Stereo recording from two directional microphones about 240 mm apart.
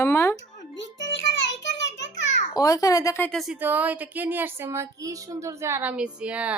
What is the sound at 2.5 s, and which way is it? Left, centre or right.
A woman's voice, centre.